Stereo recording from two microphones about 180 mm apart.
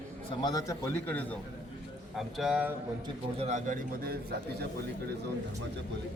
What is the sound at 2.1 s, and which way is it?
Speech, centre (ahead or behind).